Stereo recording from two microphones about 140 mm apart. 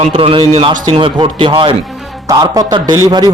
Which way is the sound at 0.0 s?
45° right (ahead or behind).